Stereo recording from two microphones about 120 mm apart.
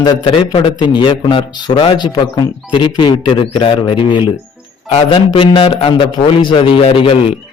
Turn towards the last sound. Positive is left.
turn(degrees=50)  # may be behind; listen again after turning